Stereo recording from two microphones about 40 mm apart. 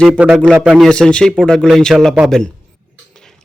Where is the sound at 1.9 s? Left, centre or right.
Right.